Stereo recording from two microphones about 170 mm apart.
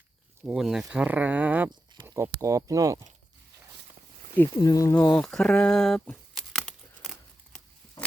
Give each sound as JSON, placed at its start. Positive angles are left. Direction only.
{"t": 0.4, "sound": "speech", "side_deg": 0}
{"t": 4.6, "sound": "speech", "side_deg": 20}
{"t": 4.9, "sound": "a sound", "side_deg": 5}